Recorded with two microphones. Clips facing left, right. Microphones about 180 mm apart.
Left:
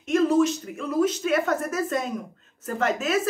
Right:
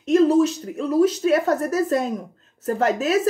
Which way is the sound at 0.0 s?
35° right (ahead or behind).